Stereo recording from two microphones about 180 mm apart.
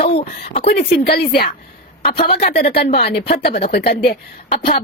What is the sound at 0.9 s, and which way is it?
Speech, 60° left (ahead or behind).